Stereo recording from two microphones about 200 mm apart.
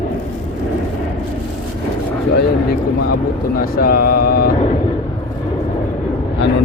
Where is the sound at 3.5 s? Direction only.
45° left (ahead or behind).